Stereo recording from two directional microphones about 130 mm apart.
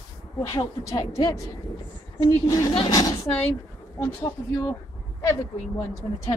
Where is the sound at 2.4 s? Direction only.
25° left (ahead or behind).